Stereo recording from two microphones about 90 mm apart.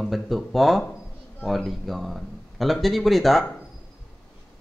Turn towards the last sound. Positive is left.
turn(degrees=0)  # may be behind; listen again after turning